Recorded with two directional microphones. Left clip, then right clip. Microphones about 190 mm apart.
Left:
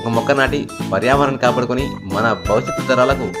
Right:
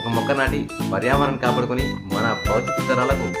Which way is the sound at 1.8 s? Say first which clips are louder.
Left 5 dB; centre (ahead or behind).